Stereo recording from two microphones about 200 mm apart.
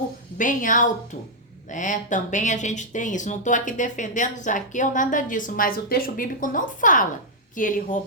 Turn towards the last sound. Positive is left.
turn(degrees=40)  # may be behind; listen again after turning